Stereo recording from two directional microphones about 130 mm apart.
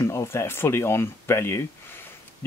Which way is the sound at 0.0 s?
20° left (ahead or behind).